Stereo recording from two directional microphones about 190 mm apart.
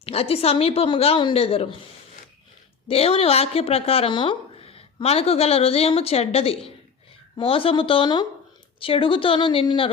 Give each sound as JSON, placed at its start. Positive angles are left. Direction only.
{"t": 0.0, "sound": "a woman's voice", "side_deg": 30}
{"t": 2.8, "sound": "a woman's voice", "side_deg": 30}